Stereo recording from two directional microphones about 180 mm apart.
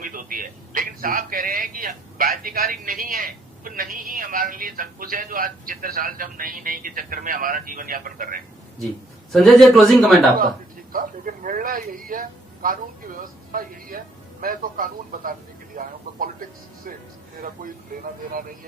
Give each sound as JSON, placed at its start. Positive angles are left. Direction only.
{"t": 0.0, "sound": "a man's voice", "side_deg": -50}
{"t": 9.3, "sound": "a man's voice", "side_deg": 0}
{"t": 10.9, "sound": "a man's voice", "side_deg": -50}
{"t": 17.9, "sound": "a man's voice", "side_deg": -50}